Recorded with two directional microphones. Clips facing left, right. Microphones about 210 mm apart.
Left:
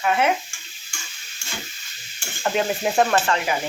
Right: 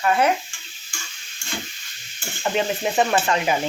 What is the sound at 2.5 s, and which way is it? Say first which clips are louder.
Speech: left 1 dB; centre (ahead or behind).